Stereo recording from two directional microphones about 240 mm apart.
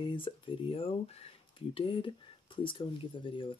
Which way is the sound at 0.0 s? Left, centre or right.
Left.